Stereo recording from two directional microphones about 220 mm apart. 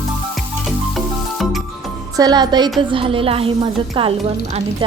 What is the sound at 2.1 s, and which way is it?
A woman's voice, 15° right (ahead or behind).